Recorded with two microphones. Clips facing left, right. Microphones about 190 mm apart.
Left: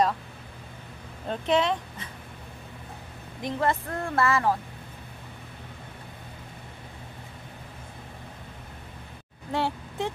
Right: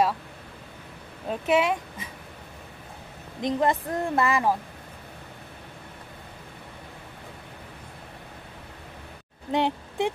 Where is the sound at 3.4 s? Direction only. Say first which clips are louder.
Right 3 dB; 20° right (ahead or behind).